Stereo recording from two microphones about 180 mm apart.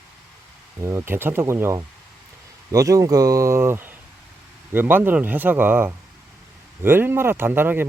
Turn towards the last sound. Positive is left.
turn(degrees=-10)  # may be behind; listen again after turning